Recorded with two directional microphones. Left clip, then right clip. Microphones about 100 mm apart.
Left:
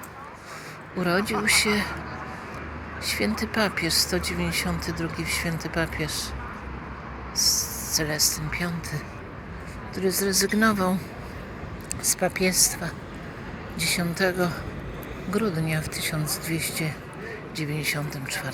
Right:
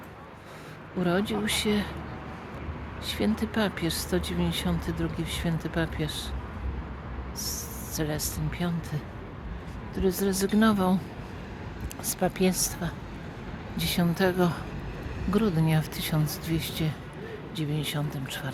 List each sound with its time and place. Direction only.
1.0 s speech: 35° right (ahead or behind)
3.1 s speech: 45° right (ahead or behind)
7.9 s speech: 55° right (ahead or behind)
12.0 s speech: 60° right (ahead or behind)
13.7 s a woman's voice: 90° right; by 18.5 s 55° right (ahead or behind)